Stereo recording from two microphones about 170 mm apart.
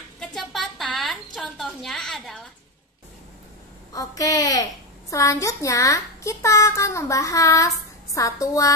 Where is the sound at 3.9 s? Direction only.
20° left (ahead or behind).